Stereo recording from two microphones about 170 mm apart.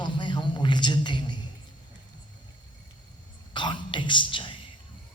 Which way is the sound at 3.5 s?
30° left (ahead or behind).